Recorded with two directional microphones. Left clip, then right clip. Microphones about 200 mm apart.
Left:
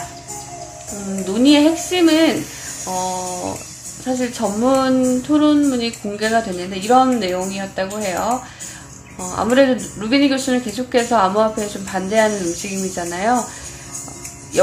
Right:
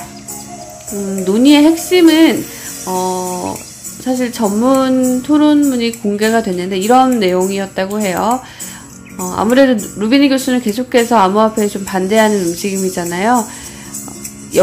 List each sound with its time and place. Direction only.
1.2 s speech: 20° right (ahead or behind)
3.0 s music: 10° right (ahead or behind)
4.0 s speech: 20° right (ahead or behind)